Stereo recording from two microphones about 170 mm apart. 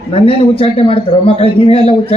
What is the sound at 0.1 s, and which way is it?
A man's voice, 35° left (ahead or behind).